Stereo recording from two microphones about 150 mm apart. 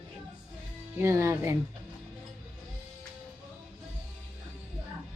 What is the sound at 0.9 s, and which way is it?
Speech, 20° right (ahead or behind).